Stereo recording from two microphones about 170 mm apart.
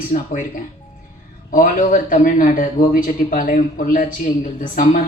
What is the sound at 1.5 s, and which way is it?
Speech, 55° left (ahead or behind).